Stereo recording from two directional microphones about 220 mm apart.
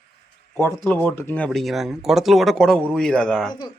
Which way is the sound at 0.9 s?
10° left (ahead or behind).